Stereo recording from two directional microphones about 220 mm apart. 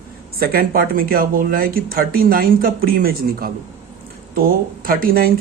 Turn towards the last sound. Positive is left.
turn(degrees=-40)  # may be behind; listen again after turning